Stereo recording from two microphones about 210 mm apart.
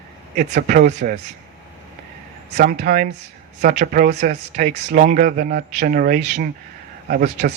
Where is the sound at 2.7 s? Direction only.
40° right (ahead or behind).